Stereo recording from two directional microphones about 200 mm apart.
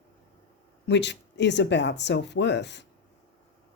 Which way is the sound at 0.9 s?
60° left (ahead or behind).